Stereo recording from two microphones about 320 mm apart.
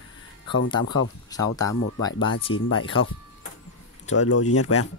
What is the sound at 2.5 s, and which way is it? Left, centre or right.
Speech, left.